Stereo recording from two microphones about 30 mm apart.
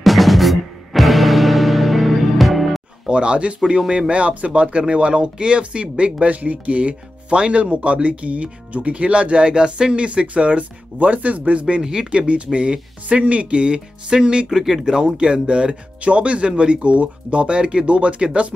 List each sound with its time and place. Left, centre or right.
0.0 s music: centre
3.1 s speech: right
4.1 s speech: right
6.3 s speech: right
7.7 s speech: right
10.0 s speech: right
11.8 s speech: right
12.1 s speech: right
13.2 s speech: right
14.5 s speech: centre; by 18.5 s right